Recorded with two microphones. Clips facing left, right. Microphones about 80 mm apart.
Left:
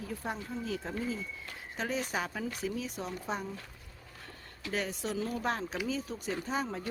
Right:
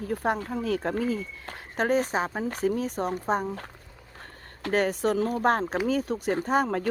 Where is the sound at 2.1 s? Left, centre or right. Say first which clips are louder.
Right 7 dB; right.